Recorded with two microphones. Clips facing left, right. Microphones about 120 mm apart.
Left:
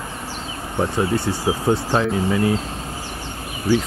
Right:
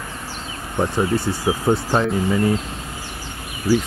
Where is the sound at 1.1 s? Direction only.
25° left (ahead or behind).